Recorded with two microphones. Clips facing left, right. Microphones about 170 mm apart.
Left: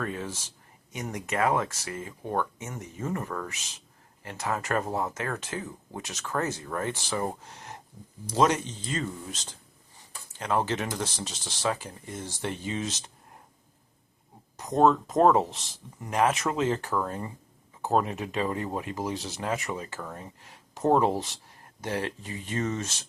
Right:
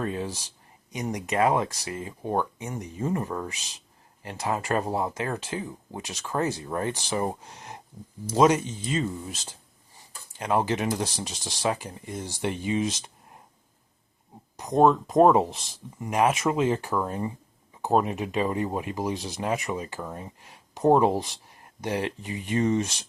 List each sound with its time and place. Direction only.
0.0 s speech: 25° right (ahead or behind)
14.5 s speech: 15° right (ahead or behind)